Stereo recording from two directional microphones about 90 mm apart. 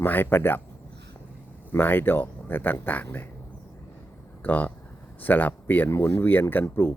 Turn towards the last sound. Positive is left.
turn(degrees=25)  # may be behind; listen again after turning